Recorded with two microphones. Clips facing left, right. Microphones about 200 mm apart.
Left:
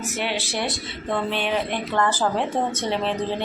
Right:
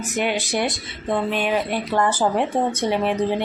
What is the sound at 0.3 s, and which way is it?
Speech, 15° right (ahead or behind).